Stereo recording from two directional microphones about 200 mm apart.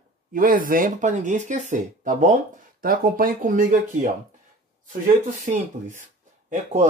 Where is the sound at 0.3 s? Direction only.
45° right (ahead or behind).